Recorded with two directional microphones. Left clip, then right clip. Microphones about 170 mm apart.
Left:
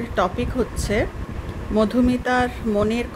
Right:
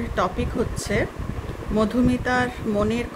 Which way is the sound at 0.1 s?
25° left (ahead or behind).